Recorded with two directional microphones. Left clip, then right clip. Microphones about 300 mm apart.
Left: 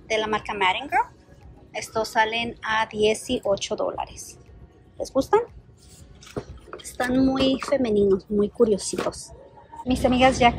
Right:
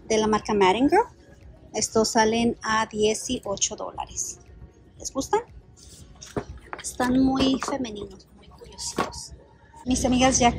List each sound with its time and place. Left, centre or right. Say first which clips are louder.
0.1 s speech: right 2 dB; centre
6.3 s a sound: right 2 dB; centre
6.8 s speech: even; centre
9.8 s speech: left 3 dB; centre